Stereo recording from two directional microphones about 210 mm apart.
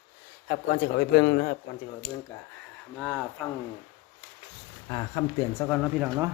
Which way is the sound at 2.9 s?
5° left (ahead or behind).